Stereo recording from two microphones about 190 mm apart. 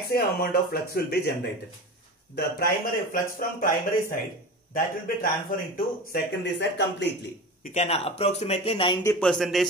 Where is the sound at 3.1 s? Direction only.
45° left (ahead or behind).